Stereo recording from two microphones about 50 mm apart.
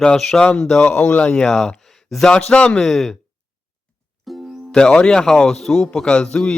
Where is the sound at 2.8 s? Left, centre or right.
Centre.